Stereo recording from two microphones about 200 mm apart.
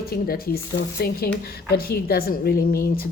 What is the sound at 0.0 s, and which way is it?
A woman's voice, 50° left (ahead or behind).